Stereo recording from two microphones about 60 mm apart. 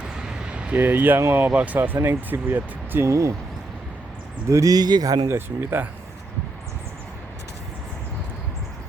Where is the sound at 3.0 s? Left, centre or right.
Right.